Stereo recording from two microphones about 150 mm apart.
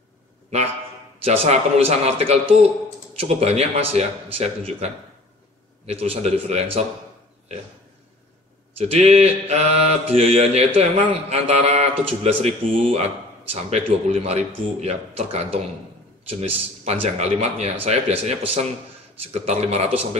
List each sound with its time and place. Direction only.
1.2 s mantra: 45° right (ahead or behind)
8.7 s mantra: 45° right (ahead or behind)